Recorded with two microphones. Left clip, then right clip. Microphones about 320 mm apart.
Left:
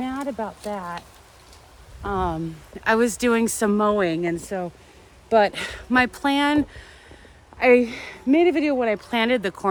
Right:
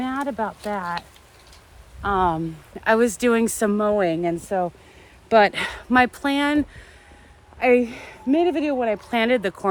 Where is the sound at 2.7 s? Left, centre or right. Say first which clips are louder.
Right 1 dB; centre.